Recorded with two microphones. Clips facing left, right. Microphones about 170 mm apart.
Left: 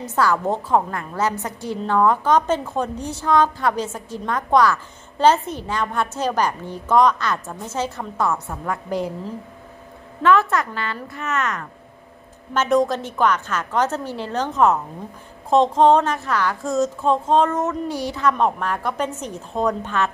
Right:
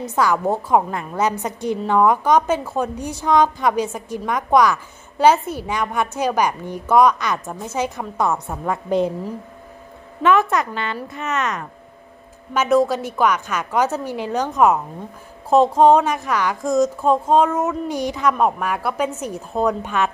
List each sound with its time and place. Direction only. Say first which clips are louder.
0.0 s a woman's voice: right 1 dB; 15° right (ahead or behind)
10.2 s a woman's voice: right 1 dB; 15° right (ahead or behind)
12.5 s a woman's voice: right 2 dB; 5° right (ahead or behind)